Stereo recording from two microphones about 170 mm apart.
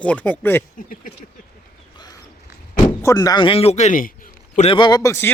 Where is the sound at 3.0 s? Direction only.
20° left (ahead or behind); by 4.8 s 40° left (ahead or behind).